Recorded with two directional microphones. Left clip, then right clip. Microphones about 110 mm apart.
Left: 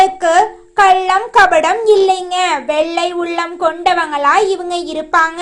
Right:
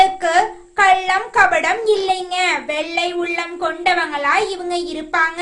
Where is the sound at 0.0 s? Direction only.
35° left (ahead or behind).